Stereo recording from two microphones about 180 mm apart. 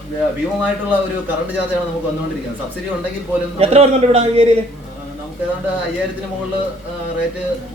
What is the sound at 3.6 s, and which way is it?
Speech, 35° right (ahead or behind).